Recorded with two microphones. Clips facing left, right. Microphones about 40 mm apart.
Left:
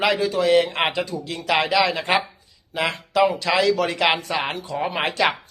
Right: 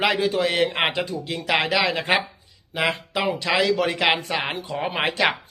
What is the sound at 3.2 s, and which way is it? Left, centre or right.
Speech, centre.